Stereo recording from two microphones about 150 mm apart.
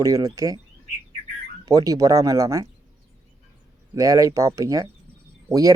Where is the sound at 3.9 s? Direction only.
20° right (ahead or behind).